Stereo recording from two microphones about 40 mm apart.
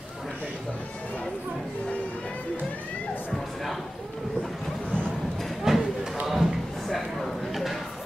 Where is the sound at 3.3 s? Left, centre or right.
Centre.